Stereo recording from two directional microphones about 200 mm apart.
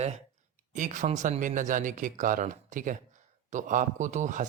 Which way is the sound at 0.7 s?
40° right (ahead or behind).